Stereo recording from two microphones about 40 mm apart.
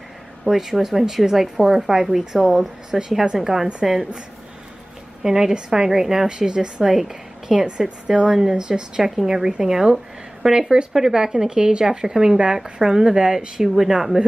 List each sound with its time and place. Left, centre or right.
0.5 s a woman's voice: centre
5.2 s a woman's voice: centre